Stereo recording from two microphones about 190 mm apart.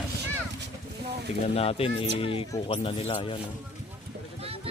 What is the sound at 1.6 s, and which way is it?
Speech, 30° left (ahead or behind).